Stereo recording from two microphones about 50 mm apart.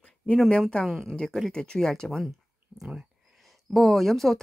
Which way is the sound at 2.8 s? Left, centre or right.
Centre.